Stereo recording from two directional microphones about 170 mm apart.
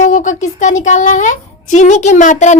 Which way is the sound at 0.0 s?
50° left (ahead or behind).